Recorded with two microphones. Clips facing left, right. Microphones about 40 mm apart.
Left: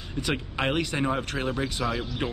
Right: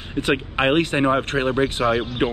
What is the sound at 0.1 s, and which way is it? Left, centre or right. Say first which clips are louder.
Speech: right 8 dB; right.